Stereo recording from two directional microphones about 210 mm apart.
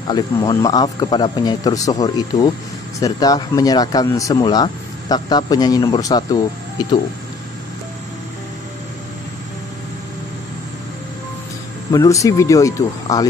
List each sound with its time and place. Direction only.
0.1 s speech: 20° left (ahead or behind)
11.9 s speech: 15° left (ahead or behind)